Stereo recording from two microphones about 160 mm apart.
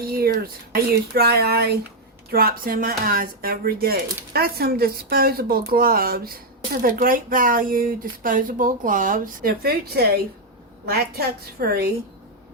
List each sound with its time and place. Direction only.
0.0 s speech: 65° right (ahead or behind)
2.3 s speech: 65° right (ahead or behind)